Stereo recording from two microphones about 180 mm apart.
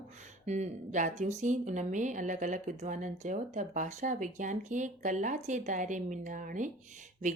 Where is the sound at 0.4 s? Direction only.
40° right (ahead or behind).